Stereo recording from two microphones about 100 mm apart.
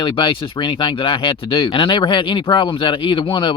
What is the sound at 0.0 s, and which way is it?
Speech, 55° left (ahead or behind).